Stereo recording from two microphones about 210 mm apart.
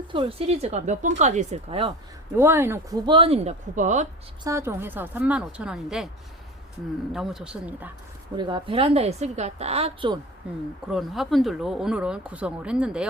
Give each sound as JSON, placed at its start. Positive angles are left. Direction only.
{"t": 0.1, "sound": "speech", "side_deg": -25}
{"t": 2.3, "sound": "a woman's voice", "side_deg": -10}
{"t": 3.1, "sound": "speech", "side_deg": -25}
{"t": 4.4, "sound": "a woman's voice", "side_deg": -15}
{"t": 7.1, "sound": "speech", "side_deg": 0}
{"t": 8.4, "sound": "a woman's voice", "side_deg": -20}
{"t": 10.9, "sound": "speech", "side_deg": 0}